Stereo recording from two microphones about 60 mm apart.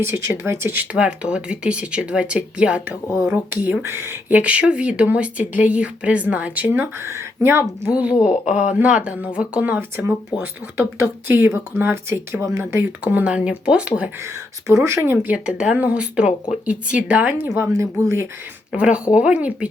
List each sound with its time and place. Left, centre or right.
0.0 s speech: right
0.9 s speech: centre
3.8 s speech: right
4.3 s speech: right
7.1 s speech: right
7.9 s speech: right
10.3 s speech: centre
11.3 s speech: right; by 14.1 s centre
14.2 s speech: right
15.2 s speech: right
17.5 s speech: right
18.7 s speech: centre